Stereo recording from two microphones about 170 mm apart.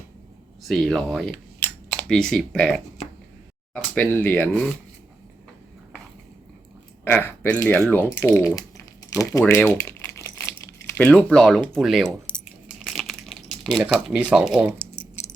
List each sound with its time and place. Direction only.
0.6 s speech: centre (ahead or behind)
7.0 s speech: 15° left (ahead or behind)
9.4 s crumpling: 15° left (ahead or behind)
10.8 s speech: 10° left (ahead or behind)
12.9 s crumpling: centre (ahead or behind)